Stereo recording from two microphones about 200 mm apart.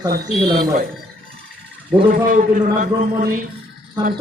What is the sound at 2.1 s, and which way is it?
A man's voice, 40° right (ahead or behind).